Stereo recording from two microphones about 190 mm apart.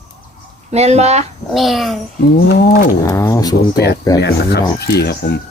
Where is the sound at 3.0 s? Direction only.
15° left (ahead or behind).